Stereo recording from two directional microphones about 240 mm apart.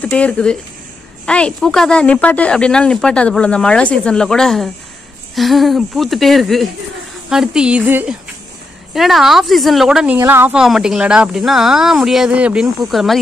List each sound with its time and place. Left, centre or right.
0.0 s speech: centre